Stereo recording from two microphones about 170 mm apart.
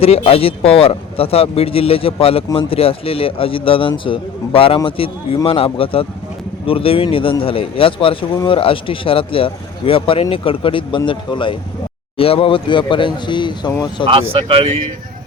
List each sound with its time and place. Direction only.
0.0 s speech: 35° left (ahead or behind)
14.1 s speech: 30° right (ahead or behind)